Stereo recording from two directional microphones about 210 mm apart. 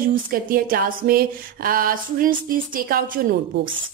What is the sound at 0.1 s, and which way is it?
Speech, 40° right (ahead or behind).